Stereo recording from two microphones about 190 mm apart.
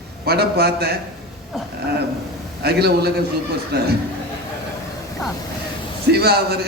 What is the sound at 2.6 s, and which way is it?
A man's voice, 60° right (ahead or behind).